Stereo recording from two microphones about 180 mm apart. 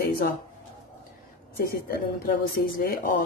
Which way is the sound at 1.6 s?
55° left (ahead or behind).